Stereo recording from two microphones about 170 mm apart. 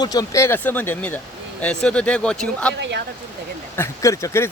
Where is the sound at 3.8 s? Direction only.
20° left (ahead or behind).